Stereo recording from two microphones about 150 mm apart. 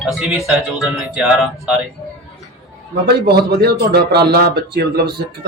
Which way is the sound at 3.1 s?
90° right.